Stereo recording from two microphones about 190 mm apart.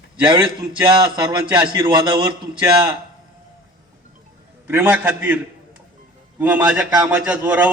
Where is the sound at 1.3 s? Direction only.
25° right (ahead or behind).